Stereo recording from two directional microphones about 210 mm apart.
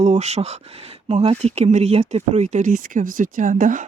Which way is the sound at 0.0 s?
30° right (ahead or behind).